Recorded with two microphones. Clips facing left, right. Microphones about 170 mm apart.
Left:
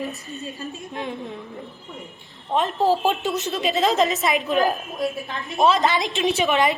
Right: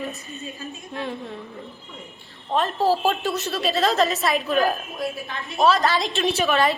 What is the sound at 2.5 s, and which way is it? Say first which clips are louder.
A woman's voice: left 1 dB; 15° left (ahead or behind).